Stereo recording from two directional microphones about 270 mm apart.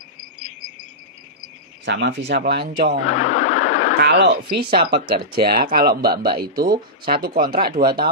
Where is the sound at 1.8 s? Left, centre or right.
Right.